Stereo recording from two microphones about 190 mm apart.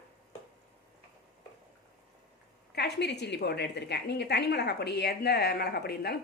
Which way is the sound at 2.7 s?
60° left (ahead or behind).